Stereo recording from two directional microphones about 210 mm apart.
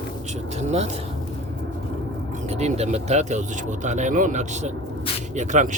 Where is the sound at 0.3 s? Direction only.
30° right (ahead or behind).